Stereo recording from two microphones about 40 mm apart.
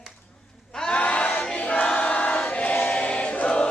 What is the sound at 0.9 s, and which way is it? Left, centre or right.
Crowd, left.